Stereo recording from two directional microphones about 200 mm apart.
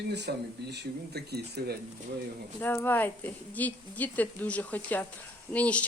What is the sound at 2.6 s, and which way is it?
Speech, 10° left (ahead or behind).